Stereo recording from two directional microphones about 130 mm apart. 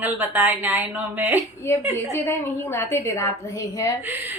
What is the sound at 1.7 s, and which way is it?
A woman's voice, 20° left (ahead or behind).